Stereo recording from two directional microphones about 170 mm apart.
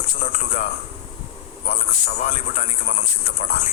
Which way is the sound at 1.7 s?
45° left (ahead or behind).